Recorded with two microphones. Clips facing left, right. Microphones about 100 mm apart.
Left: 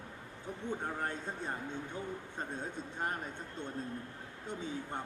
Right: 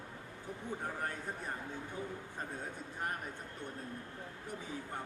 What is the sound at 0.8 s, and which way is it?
Speech, 25° left (ahead or behind).